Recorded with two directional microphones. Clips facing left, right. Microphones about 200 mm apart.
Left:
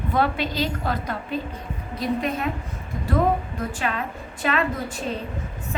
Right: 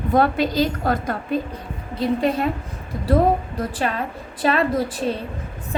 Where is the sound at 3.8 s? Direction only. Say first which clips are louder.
Right 4 dB; 35° right (ahead or behind).